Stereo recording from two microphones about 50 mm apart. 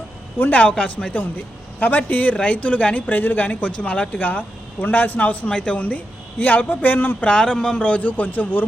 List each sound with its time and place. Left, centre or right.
0.3 s speech: left
0.8 s speech: left
7.3 s speech: centre
7.8 s speech: left